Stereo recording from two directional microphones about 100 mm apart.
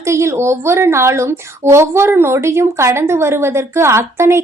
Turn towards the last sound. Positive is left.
turn(degrees=-25)  # may be behind; listen again after turning